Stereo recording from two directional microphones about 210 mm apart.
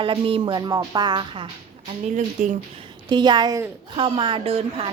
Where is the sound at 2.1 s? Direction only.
35° right (ahead or behind).